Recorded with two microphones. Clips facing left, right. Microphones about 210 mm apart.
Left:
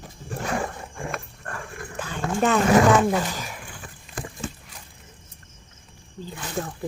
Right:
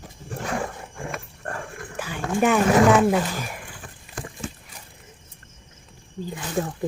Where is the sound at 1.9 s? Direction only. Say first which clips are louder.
Right 1 dB; 10° right (ahead or behind).